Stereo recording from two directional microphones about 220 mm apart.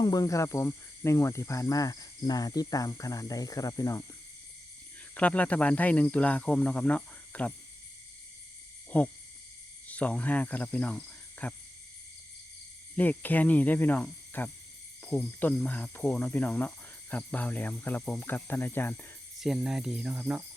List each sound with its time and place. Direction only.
0.0 s speech: 15° left (ahead or behind)
5.1 s speech: 5° left (ahead or behind)
8.9 s speech: 5° left (ahead or behind)
13.0 s speech: 10° left (ahead or behind)
19.4 s speech: centre (ahead or behind)